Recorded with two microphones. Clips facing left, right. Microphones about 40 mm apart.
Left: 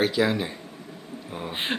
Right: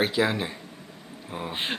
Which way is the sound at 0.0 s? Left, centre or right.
Centre.